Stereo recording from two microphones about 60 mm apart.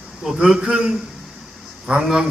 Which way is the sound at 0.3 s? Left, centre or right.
Centre.